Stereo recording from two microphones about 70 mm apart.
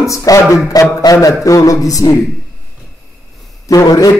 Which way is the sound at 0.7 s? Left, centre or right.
Left.